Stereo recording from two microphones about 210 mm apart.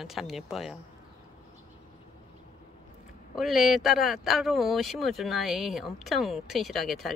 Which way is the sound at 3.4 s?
Centre (ahead or behind).